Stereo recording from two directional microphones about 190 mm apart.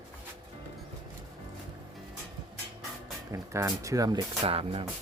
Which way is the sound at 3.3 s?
15° right (ahead or behind).